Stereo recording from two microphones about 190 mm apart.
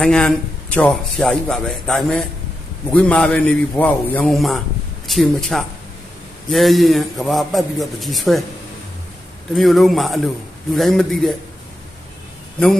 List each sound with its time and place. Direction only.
0.0 s speech: 5° left (ahead or behind)
9.6 s speech: centre (ahead or behind)